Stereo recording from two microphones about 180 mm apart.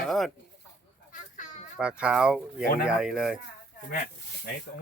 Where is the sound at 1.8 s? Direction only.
5° right (ahead or behind).